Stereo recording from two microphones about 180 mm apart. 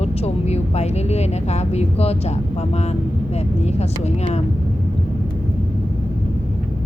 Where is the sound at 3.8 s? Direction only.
35° left (ahead or behind).